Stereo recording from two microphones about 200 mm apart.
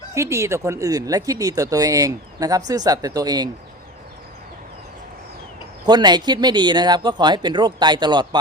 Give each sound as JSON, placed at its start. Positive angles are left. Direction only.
{"t": 0.1, "sound": "speech", "side_deg": -15}
{"t": 5.8, "sound": "speech", "side_deg": -20}